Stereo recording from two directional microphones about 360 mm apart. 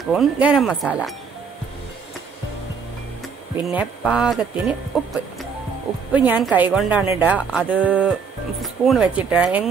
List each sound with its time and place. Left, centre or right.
0.0 s a woman's voice: centre
3.6 s a woman's voice: centre
6.1 s a woman's voice: centre